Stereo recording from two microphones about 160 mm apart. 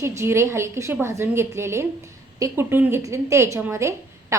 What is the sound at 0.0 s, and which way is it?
A woman's voice, 15° right (ahead or behind).